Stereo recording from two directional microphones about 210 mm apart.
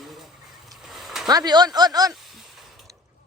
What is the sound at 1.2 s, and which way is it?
Speech, 20° right (ahead or behind).